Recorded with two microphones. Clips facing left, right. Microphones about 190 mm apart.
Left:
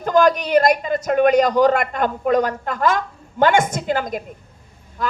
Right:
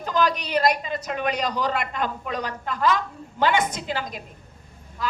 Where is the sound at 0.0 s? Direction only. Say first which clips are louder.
Left 8 dB; 50° left (ahead or behind).